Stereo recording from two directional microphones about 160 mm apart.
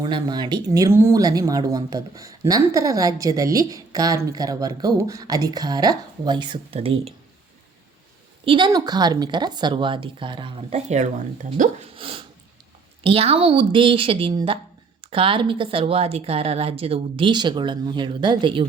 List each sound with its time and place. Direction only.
0.0 s speech: 25° right (ahead or behind)
8.4 s speech: 30° right (ahead or behind)
10.8 s speech: 50° right (ahead or behind)
11.9 s a sound: 35° right (ahead or behind)
13.0 s a woman's voice: 35° right (ahead or behind)